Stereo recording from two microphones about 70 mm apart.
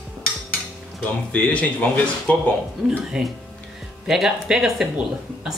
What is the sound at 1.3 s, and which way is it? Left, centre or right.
Speech, centre.